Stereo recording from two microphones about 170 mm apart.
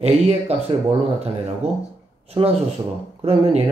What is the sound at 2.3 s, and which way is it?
Speech, 35° right (ahead or behind).